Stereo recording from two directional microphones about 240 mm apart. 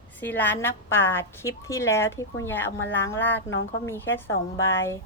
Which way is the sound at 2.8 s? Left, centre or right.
Left.